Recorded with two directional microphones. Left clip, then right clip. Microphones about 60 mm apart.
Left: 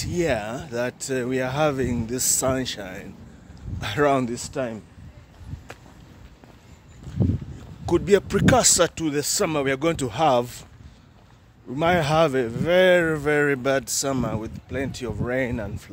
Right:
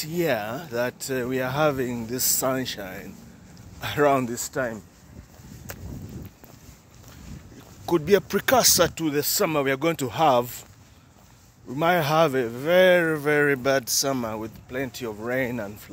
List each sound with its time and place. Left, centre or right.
0.0 s speech: centre
1.2 s speech: centre
4.3 s speech: centre
7.8 s speech: centre
8.3 s speech: centre
11.7 s speech: centre
12.9 s speech: centre
13.2 s speech: centre
14.1 s speech: centre
14.4 s speech: centre